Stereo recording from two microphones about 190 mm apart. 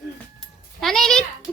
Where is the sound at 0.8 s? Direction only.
Centre (ahead or behind).